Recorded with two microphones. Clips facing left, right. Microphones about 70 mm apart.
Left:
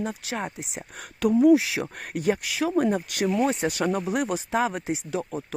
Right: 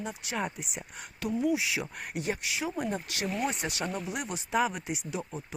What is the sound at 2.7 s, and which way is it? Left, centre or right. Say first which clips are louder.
Speech: left 13 dB; left.